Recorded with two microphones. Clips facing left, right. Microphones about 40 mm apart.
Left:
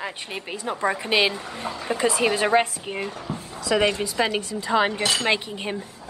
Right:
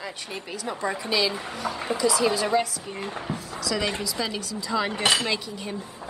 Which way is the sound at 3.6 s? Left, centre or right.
Left.